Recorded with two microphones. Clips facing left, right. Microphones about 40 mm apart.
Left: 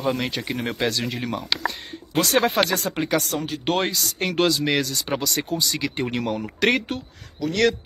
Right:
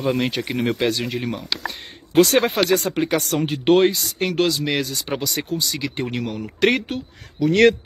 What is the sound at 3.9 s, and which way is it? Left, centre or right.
Speech, centre.